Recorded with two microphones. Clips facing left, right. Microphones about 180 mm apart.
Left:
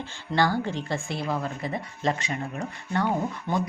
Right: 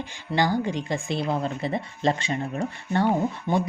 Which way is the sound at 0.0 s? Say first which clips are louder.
Even; 15° right (ahead or behind).